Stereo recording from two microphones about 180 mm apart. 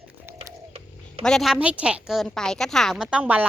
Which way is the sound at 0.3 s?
30° right (ahead or behind).